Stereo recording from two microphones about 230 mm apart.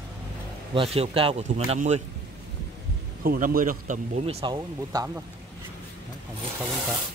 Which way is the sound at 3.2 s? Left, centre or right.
Right.